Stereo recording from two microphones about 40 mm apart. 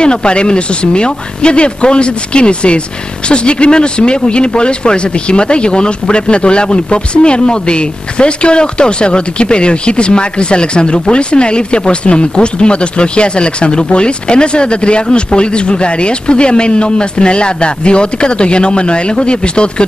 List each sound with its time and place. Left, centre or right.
0.0 s speech: left